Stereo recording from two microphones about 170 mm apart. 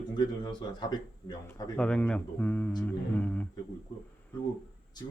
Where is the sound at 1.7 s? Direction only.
5° left (ahead or behind).